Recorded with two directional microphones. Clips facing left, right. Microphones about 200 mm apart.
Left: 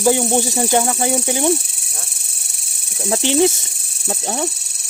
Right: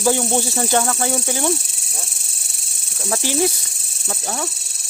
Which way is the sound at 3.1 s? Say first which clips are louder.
Left 5 dB; 25° left (ahead or behind).